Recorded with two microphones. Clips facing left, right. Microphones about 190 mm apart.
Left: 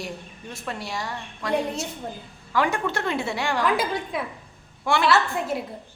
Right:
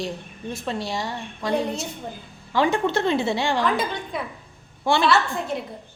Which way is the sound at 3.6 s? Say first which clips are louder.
Even; 5° left (ahead or behind).